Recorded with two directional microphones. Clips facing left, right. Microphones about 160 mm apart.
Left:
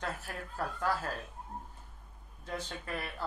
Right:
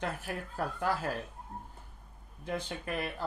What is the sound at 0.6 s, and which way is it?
Speech, 15° right (ahead or behind).